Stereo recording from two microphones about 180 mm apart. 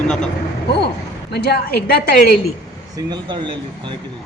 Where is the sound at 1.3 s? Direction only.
65° left (ahead or behind).